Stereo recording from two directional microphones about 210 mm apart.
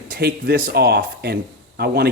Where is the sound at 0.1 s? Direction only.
50° right (ahead or behind).